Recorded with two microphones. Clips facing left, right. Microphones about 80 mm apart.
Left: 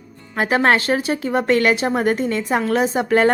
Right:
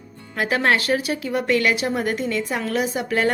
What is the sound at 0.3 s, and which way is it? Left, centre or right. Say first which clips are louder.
A woman's voice: left 4 dB; left.